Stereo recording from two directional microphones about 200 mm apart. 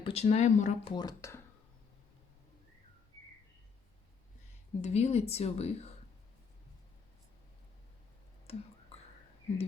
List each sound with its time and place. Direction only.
0.0 s speech: 30° left (ahead or behind)
0.9 s speech: 15° left (ahead or behind)
4.8 s speech: 35° left (ahead or behind)
8.5 s whispering: 30° left (ahead or behind)